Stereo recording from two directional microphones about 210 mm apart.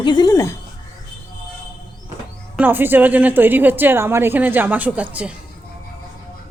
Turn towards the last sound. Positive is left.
turn(degrees=-10)  # may be behind; listen again after turning